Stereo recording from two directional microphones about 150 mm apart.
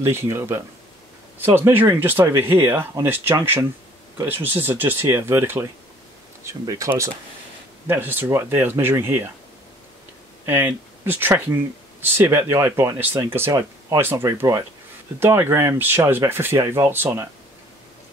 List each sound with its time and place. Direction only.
0.0 s speech: 15° right (ahead or behind)
10.4 s speech: 15° right (ahead or behind)